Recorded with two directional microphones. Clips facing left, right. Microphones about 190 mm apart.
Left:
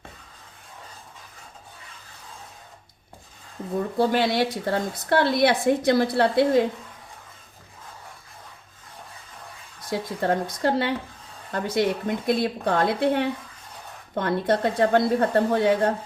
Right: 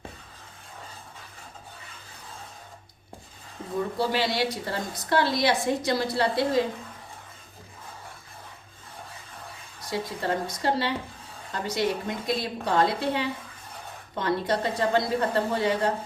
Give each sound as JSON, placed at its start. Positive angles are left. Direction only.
{"t": 3.9, "sound": "a woman's voice", "side_deg": 55}
{"t": 9.9, "sound": "a woman's voice", "side_deg": 55}